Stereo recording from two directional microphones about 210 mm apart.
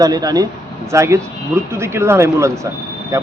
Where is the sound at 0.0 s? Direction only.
20° right (ahead or behind).